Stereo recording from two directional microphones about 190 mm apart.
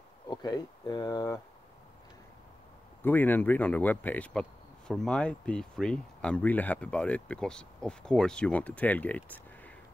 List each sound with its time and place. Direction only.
0.3 s speech: 20° left (ahead or behind)
3.0 s speech: 10° left (ahead or behind)